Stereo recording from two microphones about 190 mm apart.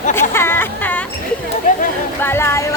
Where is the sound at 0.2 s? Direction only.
10° left (ahead or behind).